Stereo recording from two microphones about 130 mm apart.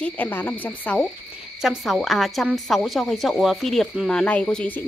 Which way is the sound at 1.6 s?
Centre (ahead or behind).